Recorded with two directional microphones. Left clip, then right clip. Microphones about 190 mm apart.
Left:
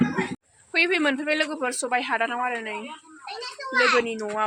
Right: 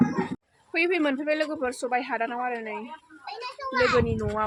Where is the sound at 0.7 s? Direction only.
Centre (ahead or behind).